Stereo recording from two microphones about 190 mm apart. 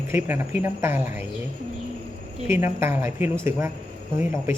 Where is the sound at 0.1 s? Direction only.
10° right (ahead or behind).